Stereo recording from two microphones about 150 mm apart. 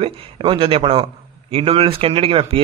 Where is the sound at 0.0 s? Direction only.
35° right (ahead or behind).